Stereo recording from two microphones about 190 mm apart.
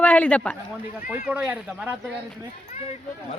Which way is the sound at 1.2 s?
5° right (ahead or behind).